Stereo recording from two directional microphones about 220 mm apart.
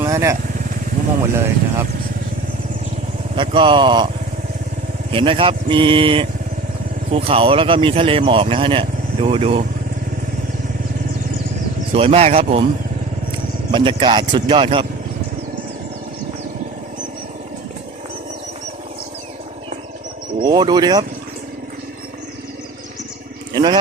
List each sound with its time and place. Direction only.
0.0 s vehicle: 15° right (ahead or behind)
1.4 s speech: 10° right (ahead or behind)
3.3 s speech: 20° right (ahead or behind)
5.1 s speech: 25° right (ahead or behind)
11.9 s speech: 25° right (ahead or behind)
13.7 s speech: 20° right (ahead or behind)
20.4 s speech: 20° right (ahead or behind)